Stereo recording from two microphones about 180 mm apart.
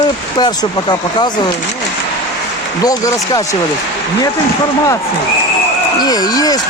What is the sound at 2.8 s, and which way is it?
Speech, 20° left (ahead or behind).